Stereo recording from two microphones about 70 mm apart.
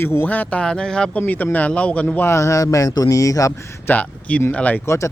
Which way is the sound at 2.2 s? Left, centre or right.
Left.